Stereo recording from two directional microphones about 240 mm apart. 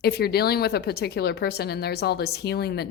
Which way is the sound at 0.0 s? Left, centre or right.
Left.